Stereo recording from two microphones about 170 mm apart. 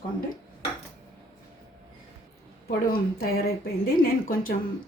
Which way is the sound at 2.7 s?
60° left (ahead or behind).